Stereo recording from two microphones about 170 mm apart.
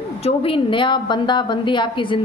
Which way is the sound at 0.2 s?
35° left (ahead or behind).